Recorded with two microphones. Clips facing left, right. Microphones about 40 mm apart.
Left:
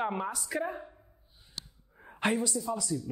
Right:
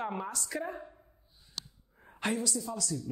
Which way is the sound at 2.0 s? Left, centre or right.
Centre.